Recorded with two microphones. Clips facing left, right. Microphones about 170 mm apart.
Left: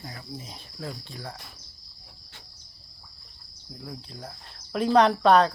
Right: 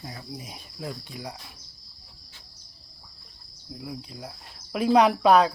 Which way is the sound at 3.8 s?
10° right (ahead or behind).